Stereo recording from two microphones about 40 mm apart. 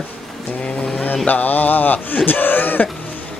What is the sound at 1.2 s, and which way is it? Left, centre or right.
Speech, left.